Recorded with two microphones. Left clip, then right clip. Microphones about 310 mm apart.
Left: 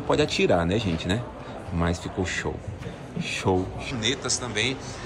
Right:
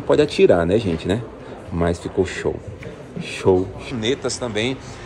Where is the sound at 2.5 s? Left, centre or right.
Right.